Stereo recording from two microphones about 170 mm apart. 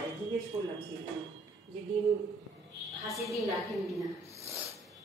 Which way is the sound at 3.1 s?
Centre (ahead or behind).